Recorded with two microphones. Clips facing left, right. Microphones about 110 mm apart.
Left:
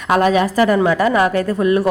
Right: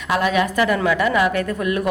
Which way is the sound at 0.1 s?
40° left (ahead or behind).